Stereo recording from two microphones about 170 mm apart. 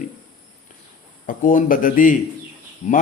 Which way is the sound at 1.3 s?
50° left (ahead or behind).